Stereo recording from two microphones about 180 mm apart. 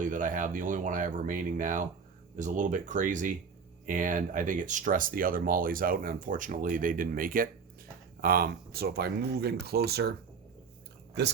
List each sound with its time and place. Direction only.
0.0 s speech: 45° right (ahead or behind); by 10.2 s 60° right (ahead or behind)